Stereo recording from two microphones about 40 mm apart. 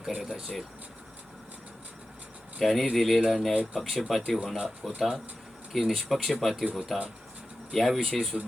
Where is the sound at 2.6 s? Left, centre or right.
Centre.